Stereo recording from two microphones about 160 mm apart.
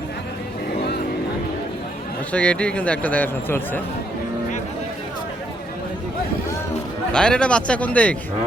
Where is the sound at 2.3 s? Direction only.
5° left (ahead or behind).